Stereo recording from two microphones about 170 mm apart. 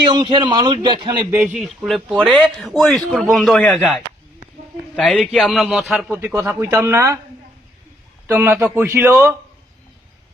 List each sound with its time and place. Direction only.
0.0 s a man's voice: 25° right (ahead or behind)
1.3 s speech: 10° right (ahead or behind)
6.1 s speech: 10° right (ahead or behind)
8.3 s speech: 15° right (ahead or behind)